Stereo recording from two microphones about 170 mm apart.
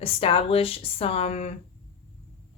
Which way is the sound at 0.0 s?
35° left (ahead or behind).